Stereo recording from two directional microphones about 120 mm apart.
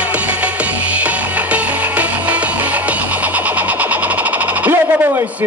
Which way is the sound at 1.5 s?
10° right (ahead or behind).